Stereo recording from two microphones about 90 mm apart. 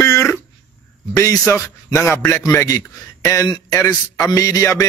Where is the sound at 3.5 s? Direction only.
40° left (ahead or behind).